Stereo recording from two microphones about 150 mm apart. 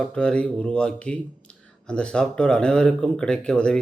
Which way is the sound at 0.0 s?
5° left (ahead or behind).